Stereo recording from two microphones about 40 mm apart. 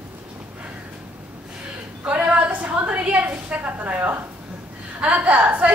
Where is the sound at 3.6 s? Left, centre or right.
Right.